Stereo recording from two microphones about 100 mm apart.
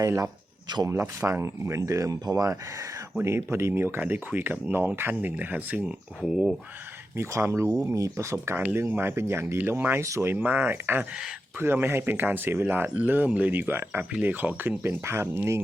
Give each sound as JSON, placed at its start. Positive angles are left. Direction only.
{"t": 0.0, "sound": "speech", "side_deg": -35}
{"t": 3.2, "sound": "speech", "side_deg": -25}
{"t": 6.2, "sound": "speech", "side_deg": -5}
{"t": 7.2, "sound": "speech", "side_deg": -25}